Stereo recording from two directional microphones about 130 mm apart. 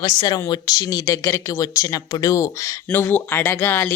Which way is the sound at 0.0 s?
30° left (ahead or behind).